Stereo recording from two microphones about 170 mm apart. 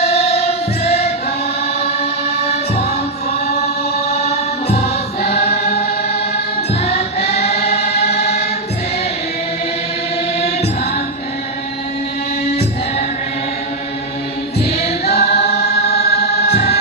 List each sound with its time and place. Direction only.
0.1 s choir: 40° left (ahead or behind)
5.3 s choir: 40° left (ahead or behind)
6.8 s music: 40° left (ahead or behind)
15.1 s choir: 40° left (ahead or behind)
16.1 s music: 70° left (ahead or behind)